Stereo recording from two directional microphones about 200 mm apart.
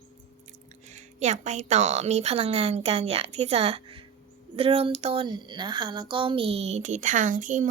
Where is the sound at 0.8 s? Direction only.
35° right (ahead or behind).